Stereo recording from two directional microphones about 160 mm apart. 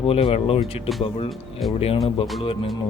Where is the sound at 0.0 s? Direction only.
40° left (ahead or behind).